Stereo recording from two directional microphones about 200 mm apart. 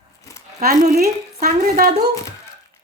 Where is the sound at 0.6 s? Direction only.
50° right (ahead or behind).